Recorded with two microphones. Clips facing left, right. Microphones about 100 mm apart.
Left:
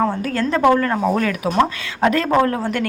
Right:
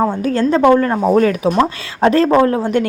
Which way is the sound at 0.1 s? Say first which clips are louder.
Right 5 dB; 25° right (ahead or behind).